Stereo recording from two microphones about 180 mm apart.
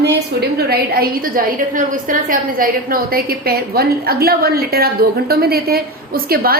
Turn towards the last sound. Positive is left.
turn(degrees=-55)  # may be behind; listen again after turning